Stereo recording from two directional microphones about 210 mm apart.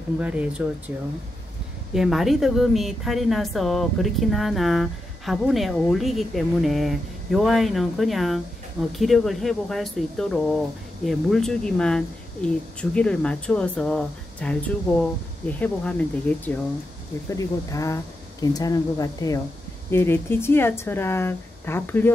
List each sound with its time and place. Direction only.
0.2 s a woman's voice: 5° right (ahead or behind)
2.0 s a woman's voice: centre (ahead or behind)